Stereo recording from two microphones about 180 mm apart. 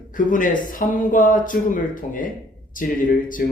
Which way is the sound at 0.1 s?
45° left (ahead or behind).